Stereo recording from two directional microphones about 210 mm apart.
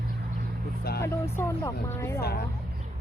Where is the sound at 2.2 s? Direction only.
50° left (ahead or behind).